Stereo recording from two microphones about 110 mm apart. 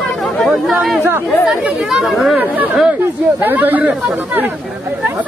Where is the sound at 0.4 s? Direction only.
Centre (ahead or behind).